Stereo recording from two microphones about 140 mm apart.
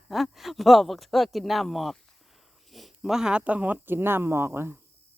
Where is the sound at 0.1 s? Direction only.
Centre (ahead or behind).